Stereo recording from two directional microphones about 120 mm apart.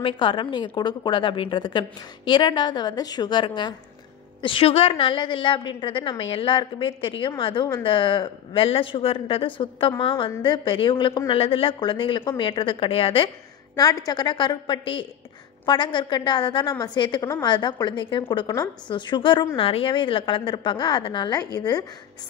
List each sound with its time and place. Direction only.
0.0 s a woman's voice: 45° left (ahead or behind)
13.7 s a woman's voice: 30° left (ahead or behind)